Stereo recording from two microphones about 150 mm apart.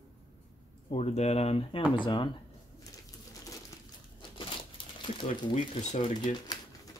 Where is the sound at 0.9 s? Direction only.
45° left (ahead or behind).